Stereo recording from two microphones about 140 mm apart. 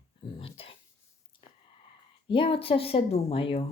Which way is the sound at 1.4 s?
40° left (ahead or behind).